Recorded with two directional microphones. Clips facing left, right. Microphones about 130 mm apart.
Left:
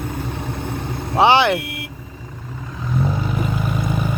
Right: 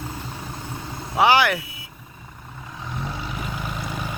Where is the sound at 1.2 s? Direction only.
25° left (ahead or behind).